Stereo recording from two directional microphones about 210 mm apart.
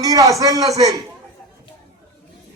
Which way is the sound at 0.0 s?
15° right (ahead or behind).